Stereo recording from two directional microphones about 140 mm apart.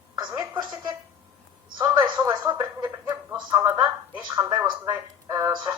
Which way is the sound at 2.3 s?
30° right (ahead or behind).